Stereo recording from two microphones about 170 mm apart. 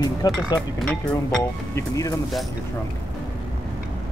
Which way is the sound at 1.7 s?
20° left (ahead or behind).